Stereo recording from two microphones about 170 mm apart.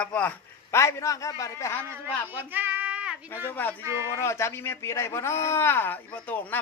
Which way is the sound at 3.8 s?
15° right (ahead or behind).